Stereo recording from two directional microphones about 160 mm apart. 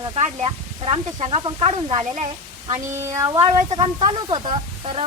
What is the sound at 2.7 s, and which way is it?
Speech, 20° right (ahead or behind).